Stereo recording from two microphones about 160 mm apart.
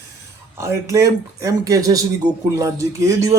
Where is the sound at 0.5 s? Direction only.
20° right (ahead or behind).